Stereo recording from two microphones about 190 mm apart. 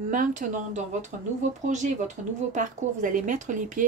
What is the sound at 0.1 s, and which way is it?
Speech, 40° right (ahead or behind).